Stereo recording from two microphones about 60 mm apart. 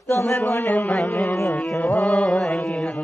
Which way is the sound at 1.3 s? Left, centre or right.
Left.